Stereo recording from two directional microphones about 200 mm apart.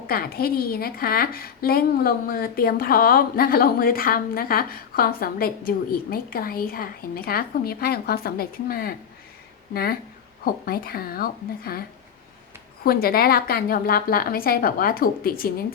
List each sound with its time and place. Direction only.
0.1 s a woman's voice: 50° left (ahead or behind)